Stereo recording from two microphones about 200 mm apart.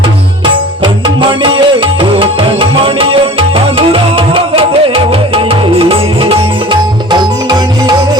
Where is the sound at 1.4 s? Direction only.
25° right (ahead or behind).